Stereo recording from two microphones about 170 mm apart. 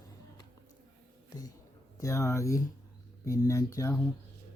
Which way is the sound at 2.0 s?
15° left (ahead or behind).